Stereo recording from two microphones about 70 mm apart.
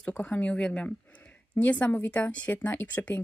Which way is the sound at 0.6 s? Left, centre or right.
Centre.